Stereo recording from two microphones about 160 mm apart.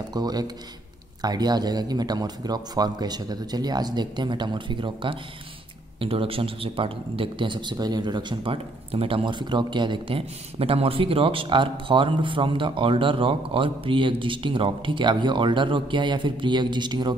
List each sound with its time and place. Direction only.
0.1 s a man's voice: 25° right (ahead or behind)